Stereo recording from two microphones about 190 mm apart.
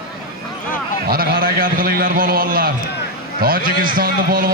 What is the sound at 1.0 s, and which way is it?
A man's voice, 50° right (ahead or behind).